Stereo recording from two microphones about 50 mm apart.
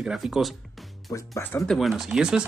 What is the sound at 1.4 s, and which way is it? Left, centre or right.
Speech, left.